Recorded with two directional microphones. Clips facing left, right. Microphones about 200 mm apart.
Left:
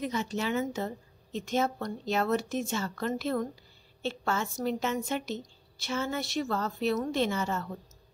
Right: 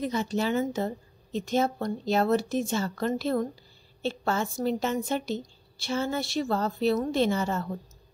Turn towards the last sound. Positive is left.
turn(degrees=-35)  # may be behind; listen again after turning